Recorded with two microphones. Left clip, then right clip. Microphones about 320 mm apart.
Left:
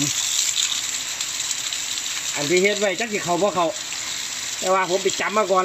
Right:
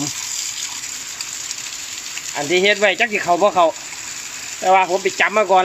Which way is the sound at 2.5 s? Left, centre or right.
Right.